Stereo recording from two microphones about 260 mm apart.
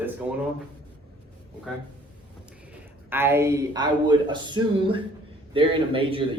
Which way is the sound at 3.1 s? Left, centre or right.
Centre.